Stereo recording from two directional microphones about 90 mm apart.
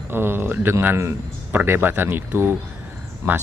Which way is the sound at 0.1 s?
25° right (ahead or behind).